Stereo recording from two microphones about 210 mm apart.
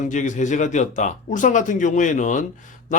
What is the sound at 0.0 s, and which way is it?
Speech, 35° left (ahead or behind).